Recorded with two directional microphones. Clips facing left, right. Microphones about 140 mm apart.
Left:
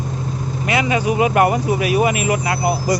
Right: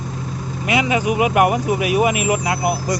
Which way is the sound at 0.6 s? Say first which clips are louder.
Even; 15° right (ahead or behind).